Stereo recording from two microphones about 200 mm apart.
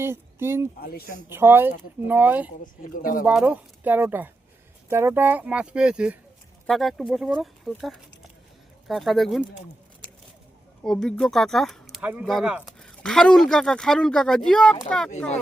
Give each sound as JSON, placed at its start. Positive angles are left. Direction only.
{"t": 0.0, "sound": "speech", "side_deg": -10}
{"t": 0.8, "sound": "speech", "side_deg": 50}
{"t": 1.3, "sound": "speech", "side_deg": -10}
{"t": 2.9, "sound": "speech", "side_deg": 45}
{"t": 3.2, "sound": "speech", "side_deg": -5}
{"t": 10.8, "sound": "speech", "side_deg": 5}